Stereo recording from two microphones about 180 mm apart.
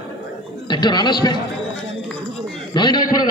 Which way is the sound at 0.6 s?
25° left (ahead or behind).